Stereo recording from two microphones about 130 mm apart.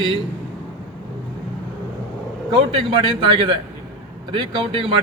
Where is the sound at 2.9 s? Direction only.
40° right (ahead or behind).